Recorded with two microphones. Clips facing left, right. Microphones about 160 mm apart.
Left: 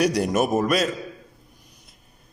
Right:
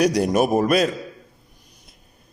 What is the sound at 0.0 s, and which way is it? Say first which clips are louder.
Speech: right 3 dB; 40° right (ahead or behind).